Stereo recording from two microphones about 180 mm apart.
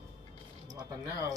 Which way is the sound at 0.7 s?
20° right (ahead or behind).